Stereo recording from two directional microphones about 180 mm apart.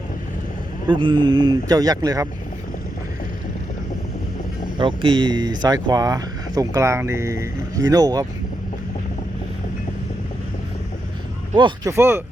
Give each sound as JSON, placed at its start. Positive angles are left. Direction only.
{"t": 0.9, "sound": "speech", "side_deg": -25}
{"t": 4.8, "sound": "speech", "side_deg": -30}
{"t": 11.5, "sound": "speech", "side_deg": -20}